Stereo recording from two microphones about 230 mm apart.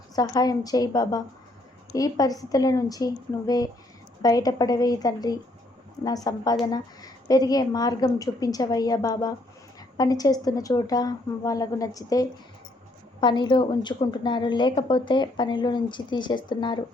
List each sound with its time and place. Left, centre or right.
0.2 s a woman's voice: centre